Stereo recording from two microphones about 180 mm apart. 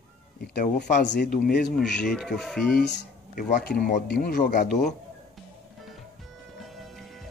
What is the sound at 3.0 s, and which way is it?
Speech, 55° left (ahead or behind).